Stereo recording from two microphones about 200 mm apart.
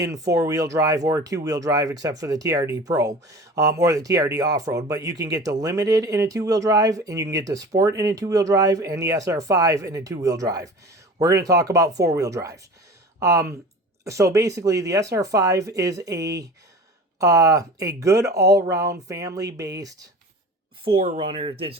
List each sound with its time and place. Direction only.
0.0 s speech: 15° right (ahead or behind)